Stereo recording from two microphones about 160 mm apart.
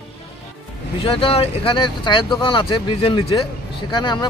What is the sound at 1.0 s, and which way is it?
Speech, 35° left (ahead or behind).